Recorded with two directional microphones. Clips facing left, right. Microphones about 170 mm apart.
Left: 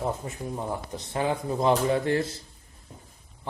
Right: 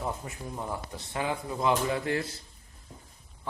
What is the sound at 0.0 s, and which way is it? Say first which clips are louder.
Speech: left 5 dB; 25° left (ahead or behind).